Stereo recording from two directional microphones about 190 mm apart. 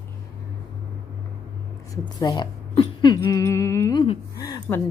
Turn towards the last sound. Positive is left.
turn(degrees=15)  # may be behind; listen again after turning